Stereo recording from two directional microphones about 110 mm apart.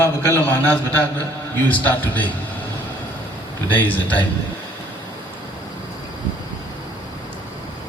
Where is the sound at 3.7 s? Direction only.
15° left (ahead or behind).